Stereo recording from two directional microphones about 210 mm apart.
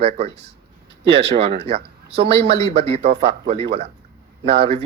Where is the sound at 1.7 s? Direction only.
30° right (ahead or behind).